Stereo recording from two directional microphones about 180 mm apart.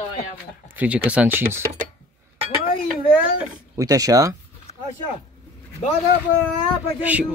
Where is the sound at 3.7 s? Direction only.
20° right (ahead or behind).